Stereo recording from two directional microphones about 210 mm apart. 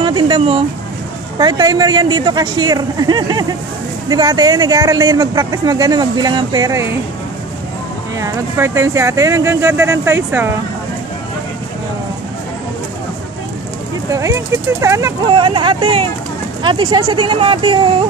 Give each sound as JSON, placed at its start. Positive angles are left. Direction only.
{"t": 0.0, "sound": "a sound", "side_deg": -20}
{"t": 1.4, "sound": "speech", "side_deg": -20}
{"t": 8.2, "sound": "speech", "side_deg": -10}
{"t": 14.1, "sound": "speech", "side_deg": -15}